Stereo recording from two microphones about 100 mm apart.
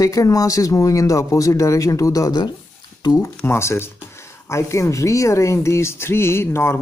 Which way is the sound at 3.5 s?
25° left (ahead or behind).